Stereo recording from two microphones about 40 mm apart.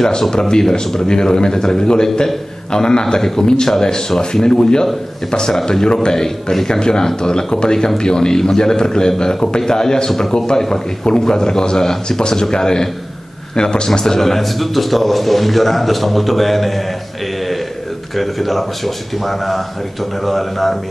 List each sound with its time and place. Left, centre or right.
0.0 s a man's voice: centre
18.1 s a man's voice: centre